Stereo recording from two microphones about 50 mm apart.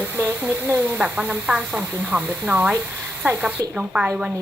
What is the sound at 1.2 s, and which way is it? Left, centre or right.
A woman's voice, right.